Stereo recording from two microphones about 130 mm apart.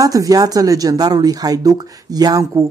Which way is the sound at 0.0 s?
25° right (ahead or behind).